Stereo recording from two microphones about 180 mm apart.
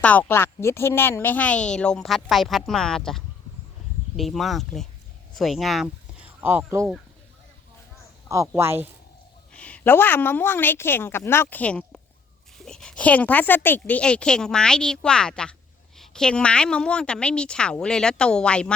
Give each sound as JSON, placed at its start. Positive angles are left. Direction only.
{"t": 0.0, "sound": "speech", "side_deg": 10}
{"t": 8.3, "sound": "a man's voice", "side_deg": -15}
{"t": 9.5, "sound": "a woman's voice", "side_deg": 5}